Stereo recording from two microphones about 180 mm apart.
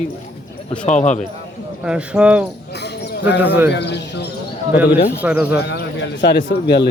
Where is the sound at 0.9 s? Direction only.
40° left (ahead or behind).